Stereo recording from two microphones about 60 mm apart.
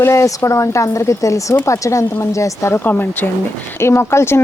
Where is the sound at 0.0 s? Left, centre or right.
Left.